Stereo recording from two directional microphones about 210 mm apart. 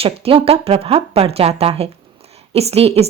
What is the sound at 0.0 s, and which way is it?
A woman's voice, 25° right (ahead or behind).